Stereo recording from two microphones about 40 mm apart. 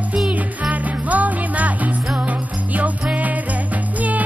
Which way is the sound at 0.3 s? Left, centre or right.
Right.